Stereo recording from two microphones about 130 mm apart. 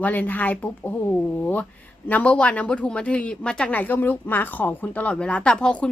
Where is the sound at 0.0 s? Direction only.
15° left (ahead or behind).